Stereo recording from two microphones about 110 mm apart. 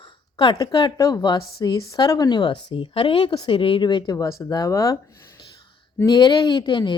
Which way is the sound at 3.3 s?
35° left (ahead or behind).